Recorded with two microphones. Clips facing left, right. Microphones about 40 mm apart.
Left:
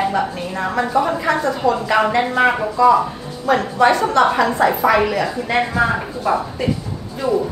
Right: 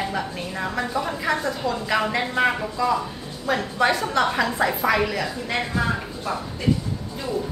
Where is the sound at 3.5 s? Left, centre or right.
Centre; by 6.3 s left.